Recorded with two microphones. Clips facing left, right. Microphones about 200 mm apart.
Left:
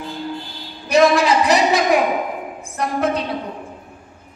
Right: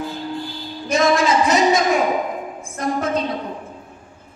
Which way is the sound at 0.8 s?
65° left (ahead or behind).